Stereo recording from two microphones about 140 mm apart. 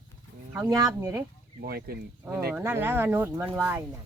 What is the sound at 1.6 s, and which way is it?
Speech, 90° right.